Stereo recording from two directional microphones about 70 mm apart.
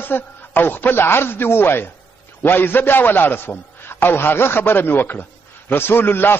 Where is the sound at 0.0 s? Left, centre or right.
Left.